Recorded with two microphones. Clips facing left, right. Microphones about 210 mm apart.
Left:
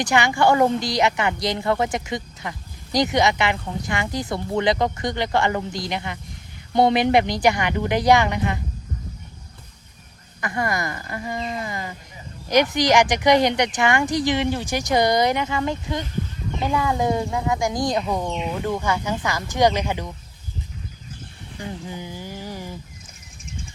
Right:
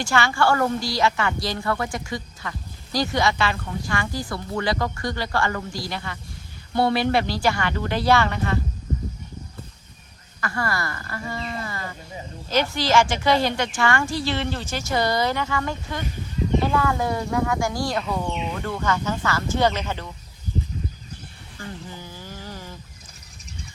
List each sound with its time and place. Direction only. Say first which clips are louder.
0.0 s a woman's voice: left 3 dB; 15° left (ahead or behind)
10.4 s a woman's voice: left 2 dB; 20° left (ahead or behind)
21.6 s a sound: left 4 dB; 15° left (ahead or behind)